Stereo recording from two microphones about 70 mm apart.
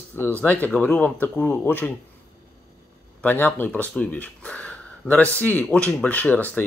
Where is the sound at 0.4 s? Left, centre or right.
Left.